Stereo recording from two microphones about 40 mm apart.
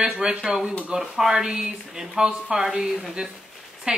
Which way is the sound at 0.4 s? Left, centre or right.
Centre.